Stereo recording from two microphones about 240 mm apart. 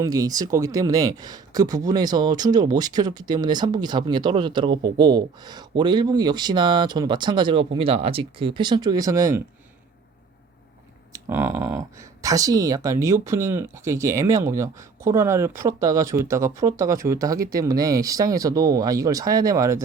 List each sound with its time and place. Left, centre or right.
0.0 s speech: centre
11.1 s speech: centre